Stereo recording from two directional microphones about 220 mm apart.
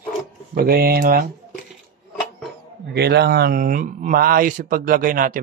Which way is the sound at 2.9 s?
50° right (ahead or behind).